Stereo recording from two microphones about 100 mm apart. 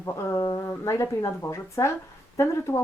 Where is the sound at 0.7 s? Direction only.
30° left (ahead or behind).